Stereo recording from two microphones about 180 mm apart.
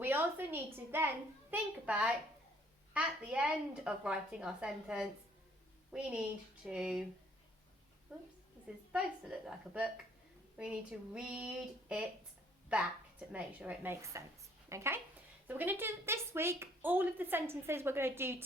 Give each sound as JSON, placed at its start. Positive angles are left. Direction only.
{"t": 0.0, "sound": "a woman's voice", "side_deg": -10}
{"t": 8.1, "sound": "a woman's voice", "side_deg": -5}